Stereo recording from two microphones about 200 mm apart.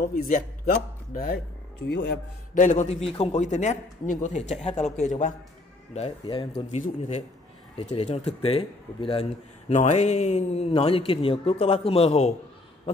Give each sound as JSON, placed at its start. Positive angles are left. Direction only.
{"t": 0.0, "sound": "a man's voice", "side_deg": 45}
{"t": 1.9, "sound": "a man's voice", "side_deg": 60}
{"t": 2.5, "sound": "speech", "side_deg": 40}